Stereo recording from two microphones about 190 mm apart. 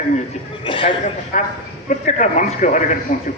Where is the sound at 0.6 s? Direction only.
25° left (ahead or behind).